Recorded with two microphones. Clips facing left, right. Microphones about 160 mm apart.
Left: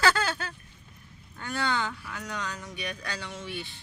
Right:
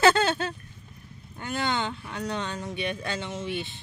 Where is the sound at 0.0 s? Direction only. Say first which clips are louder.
Right 5 dB; 25° right (ahead or behind).